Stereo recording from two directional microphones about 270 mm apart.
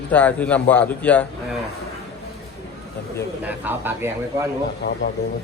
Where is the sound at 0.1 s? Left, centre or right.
Centre.